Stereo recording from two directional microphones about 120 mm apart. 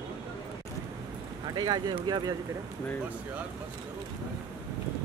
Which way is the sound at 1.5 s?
35° right (ahead or behind).